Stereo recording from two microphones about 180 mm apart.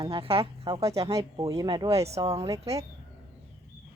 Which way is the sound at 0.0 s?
30° right (ahead or behind).